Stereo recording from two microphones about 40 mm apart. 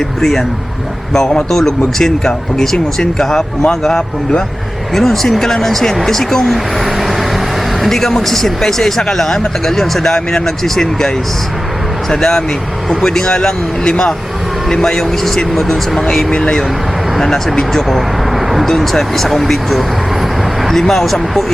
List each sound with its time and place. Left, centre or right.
0.2 s speech: centre
1.5 s speech: centre
6.8 s vehicle: centre
7.8 s speech: centre
12.1 s speech: centre